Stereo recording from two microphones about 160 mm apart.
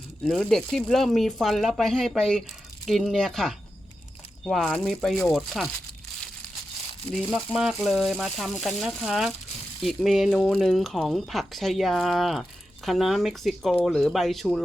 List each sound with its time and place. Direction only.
0.3 s speech: 5° left (ahead or behind)
7.1 s speech: 5° left (ahead or behind)